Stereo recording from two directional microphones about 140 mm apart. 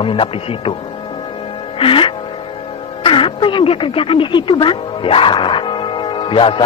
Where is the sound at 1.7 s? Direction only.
40° left (ahead or behind).